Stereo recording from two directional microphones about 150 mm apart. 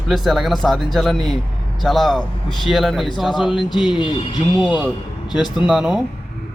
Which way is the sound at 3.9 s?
30° left (ahead or behind).